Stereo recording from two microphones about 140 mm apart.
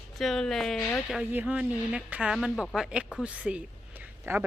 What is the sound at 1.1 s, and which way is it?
A woman's voice, 10° right (ahead or behind).